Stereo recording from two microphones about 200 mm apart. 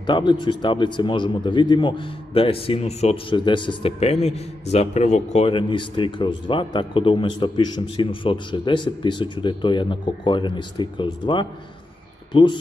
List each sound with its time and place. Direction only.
0.0 s a man's voice: 25° left (ahead or behind)